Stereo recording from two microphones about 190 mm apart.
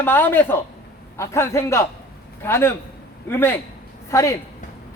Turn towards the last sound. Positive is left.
turn(degrees=15)  # may be behind; listen again after turning